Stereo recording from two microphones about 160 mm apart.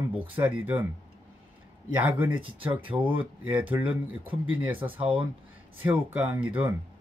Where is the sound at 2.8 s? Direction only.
35° right (ahead or behind).